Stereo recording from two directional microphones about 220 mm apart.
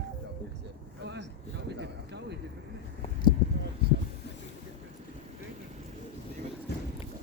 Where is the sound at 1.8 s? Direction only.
50° right (ahead or behind).